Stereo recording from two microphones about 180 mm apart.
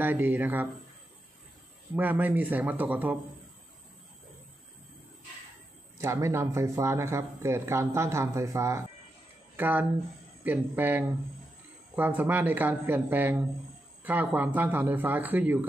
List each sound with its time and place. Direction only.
0.0 s speech: 10° right (ahead or behind)
2.0 s speech: 10° right (ahead or behind)
5.9 s speech: 15° right (ahead or behind)